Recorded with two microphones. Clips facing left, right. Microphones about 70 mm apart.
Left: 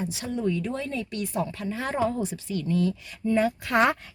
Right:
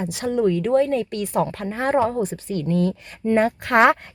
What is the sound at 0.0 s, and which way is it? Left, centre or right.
Speech, right.